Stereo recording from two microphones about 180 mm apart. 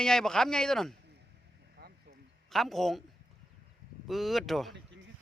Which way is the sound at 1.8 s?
60° right (ahead or behind).